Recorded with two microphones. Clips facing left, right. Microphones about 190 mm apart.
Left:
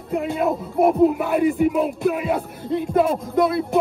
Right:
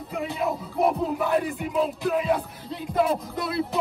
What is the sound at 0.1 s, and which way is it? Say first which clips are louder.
Speech: left 7 dB; 55° left (ahead or behind).